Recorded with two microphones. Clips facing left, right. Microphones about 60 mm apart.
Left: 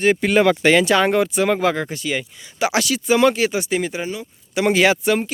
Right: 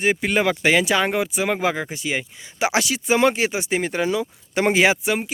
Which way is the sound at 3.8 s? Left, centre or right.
Right.